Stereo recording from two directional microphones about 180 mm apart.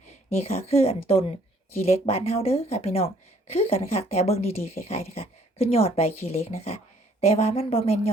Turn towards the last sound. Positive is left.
turn(degrees=35)  # may be behind; listen again after turning